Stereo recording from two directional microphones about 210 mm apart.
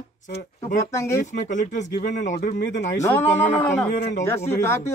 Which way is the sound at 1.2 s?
35° left (ahead or behind).